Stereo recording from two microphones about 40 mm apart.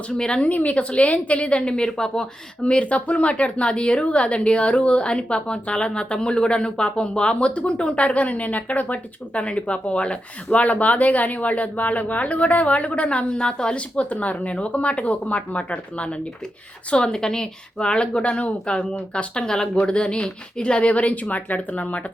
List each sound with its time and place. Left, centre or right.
0.1 s speech: left
0.4 s a woman's voice: left; by 2.2 s centre
2.6 s a woman's voice: left